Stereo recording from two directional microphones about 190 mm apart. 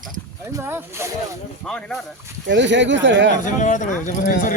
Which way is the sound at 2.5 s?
70° right (ahead or behind).